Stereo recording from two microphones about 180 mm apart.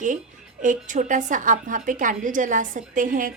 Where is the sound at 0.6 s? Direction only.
45° right (ahead or behind).